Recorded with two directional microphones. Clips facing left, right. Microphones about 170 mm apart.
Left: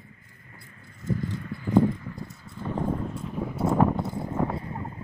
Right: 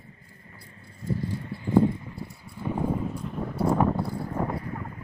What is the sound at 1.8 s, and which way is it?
Clip-clop, 20° right (ahead or behind).